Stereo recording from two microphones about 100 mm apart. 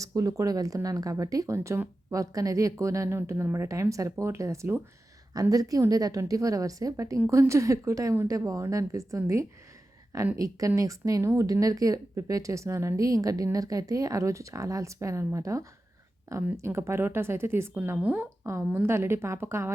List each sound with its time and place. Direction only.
0.0 s a woman's voice: 35° right (ahead or behind)